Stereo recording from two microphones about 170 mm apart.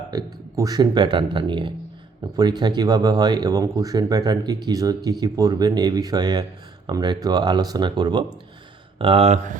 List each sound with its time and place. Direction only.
0.1 s speech: 20° right (ahead or behind); by 9.6 s 45° right (ahead or behind)